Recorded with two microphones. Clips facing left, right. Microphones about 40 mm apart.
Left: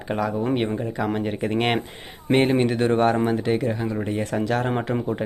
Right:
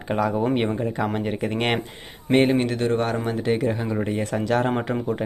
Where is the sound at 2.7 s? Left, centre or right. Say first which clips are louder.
Left 3 dB; centre.